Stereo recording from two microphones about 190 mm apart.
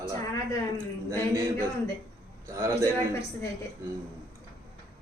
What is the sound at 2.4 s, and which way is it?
Speech, 15° right (ahead or behind).